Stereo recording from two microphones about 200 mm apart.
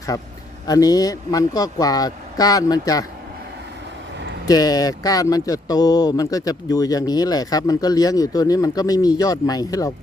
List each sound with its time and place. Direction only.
0.7 s speech: 20° left (ahead or behind)
4.4 s speech: 20° left (ahead or behind)